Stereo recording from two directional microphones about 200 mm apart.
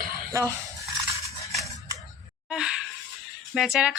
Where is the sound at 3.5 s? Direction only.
Centre (ahead or behind).